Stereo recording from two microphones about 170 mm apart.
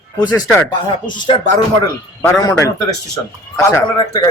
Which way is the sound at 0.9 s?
30° left (ahead or behind).